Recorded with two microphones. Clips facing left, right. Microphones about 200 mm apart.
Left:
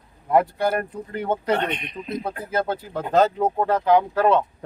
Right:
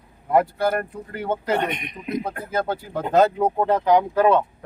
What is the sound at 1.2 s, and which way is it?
Speech, 10° right (ahead or behind).